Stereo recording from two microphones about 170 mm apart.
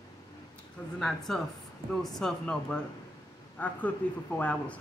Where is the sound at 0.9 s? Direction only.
Centre (ahead or behind).